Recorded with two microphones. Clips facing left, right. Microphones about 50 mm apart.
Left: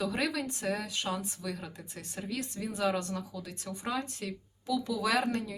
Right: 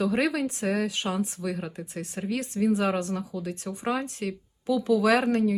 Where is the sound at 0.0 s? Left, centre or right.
Right.